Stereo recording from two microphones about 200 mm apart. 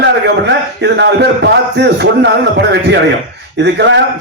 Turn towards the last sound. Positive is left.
turn(degrees=-60)  # may be behind; listen again after turning